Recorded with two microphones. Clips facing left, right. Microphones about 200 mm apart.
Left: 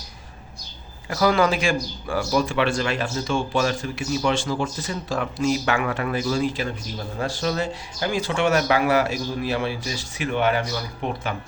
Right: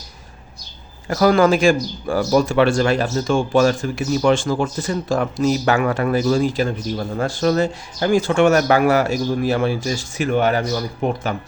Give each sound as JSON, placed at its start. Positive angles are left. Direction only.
{"t": 1.0, "sound": "speech", "side_deg": -45}